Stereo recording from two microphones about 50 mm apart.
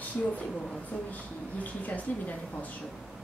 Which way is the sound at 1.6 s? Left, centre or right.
Left.